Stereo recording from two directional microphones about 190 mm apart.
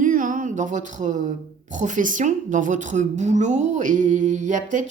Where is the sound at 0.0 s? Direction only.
45° right (ahead or behind).